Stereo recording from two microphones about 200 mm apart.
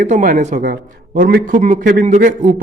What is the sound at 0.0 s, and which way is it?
A man's voice, 40° right (ahead or behind).